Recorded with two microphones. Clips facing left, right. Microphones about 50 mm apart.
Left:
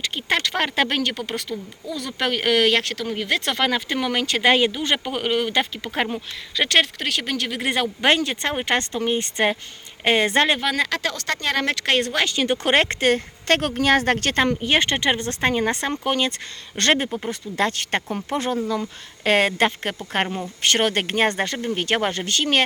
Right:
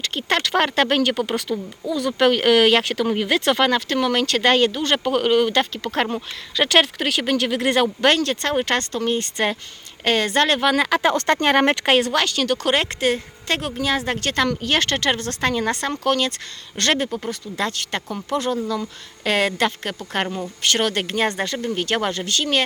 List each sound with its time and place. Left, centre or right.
0.0 s speech: centre
8.0 s speech: centre
10.6 s speech: centre
11.1 s speech: right
11.9 s speech: centre
12.2 s speech: centre
12.5 s speech: left
14.4 s a woman's voice: left
20.2 s speech: centre
20.6 s a woman's voice: left